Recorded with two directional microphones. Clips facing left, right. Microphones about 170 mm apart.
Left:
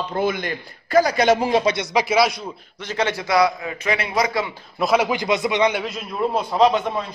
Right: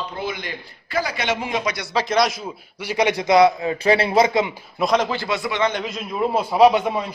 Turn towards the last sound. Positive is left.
turn(degrees=-10)  # may be behind; listen again after turning